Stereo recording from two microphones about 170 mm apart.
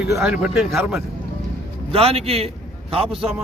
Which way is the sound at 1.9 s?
35° right (ahead or behind).